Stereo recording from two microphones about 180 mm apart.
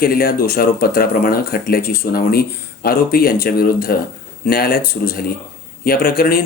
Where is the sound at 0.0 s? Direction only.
55° left (ahead or behind).